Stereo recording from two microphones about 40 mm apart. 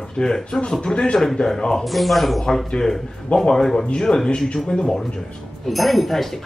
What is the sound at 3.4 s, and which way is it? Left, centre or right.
A man's voice, centre.